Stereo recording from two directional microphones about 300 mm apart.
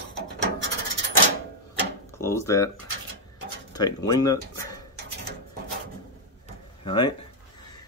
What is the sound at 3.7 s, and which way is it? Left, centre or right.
Speech, centre.